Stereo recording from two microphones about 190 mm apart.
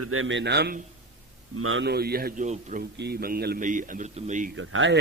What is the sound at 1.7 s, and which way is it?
A man's voice, 70° right (ahead or behind).